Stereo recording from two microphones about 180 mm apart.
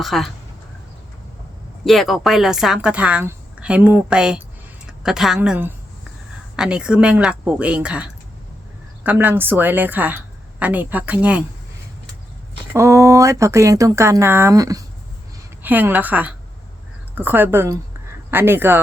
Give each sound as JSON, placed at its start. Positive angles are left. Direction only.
{"t": 0.0, "sound": "speech", "side_deg": 0}
{"t": 1.8, "sound": "a woman's voice", "side_deg": 0}
{"t": 12.7, "sound": "a woman's voice", "side_deg": -15}